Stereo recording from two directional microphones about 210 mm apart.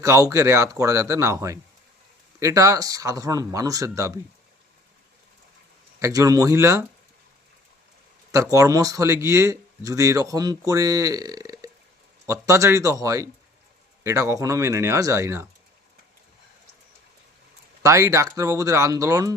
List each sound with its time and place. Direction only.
0.0 s speech: 15° right (ahead or behind)
6.0 s speech: 15° right (ahead or behind)
8.3 s speech: 15° right (ahead or behind)
17.8 s speech: 15° right (ahead or behind)